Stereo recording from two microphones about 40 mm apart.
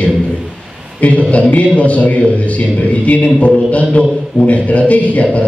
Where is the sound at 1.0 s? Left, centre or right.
Left.